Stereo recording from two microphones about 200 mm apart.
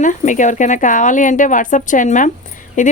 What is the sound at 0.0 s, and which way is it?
A woman's voice, 40° left (ahead or behind).